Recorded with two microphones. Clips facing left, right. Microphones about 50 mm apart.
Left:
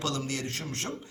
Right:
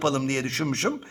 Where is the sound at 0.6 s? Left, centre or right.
Right.